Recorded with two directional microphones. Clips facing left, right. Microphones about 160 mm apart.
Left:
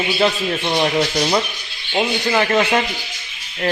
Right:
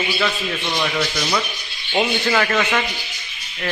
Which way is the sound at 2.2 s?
20° left (ahead or behind).